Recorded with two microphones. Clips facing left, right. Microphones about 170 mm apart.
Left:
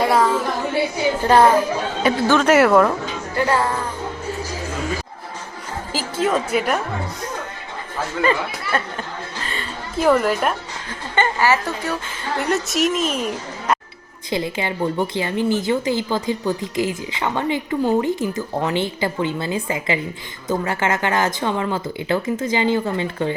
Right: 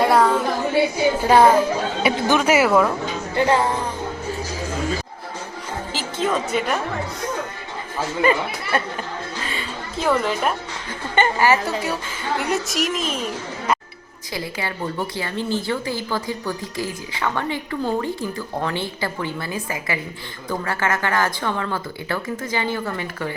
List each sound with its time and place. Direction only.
0.0 s a sound: centre (ahead or behind)
1.2 s a woman's voice: 10° right (ahead or behind)
2.5 s a woman's voice: 5° right (ahead or behind)
3.3 s speech: 20° right (ahead or behind)
5.9 s a woman's voice: 5° left (ahead or behind)
8.2 s a woman's voice: 15° right (ahead or behind)
10.0 s a woman's voice: 5° left (ahead or behind)
11.1 s a woman's voice: 15° right (ahead or behind)
12.5 s a woman's voice: centre (ahead or behind)
14.3 s a woman's voice: 20° left (ahead or behind)